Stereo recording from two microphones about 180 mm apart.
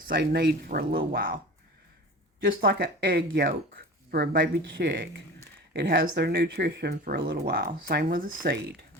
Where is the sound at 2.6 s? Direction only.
55° right (ahead or behind).